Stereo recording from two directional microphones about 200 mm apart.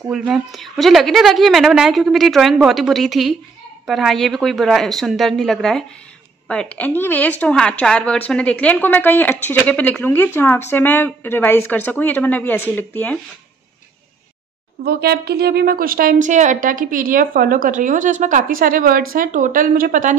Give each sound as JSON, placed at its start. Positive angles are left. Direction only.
{"t": 0.1, "sound": "a woman's voice", "side_deg": 0}
{"t": 14.9, "sound": "a woman's voice", "side_deg": -55}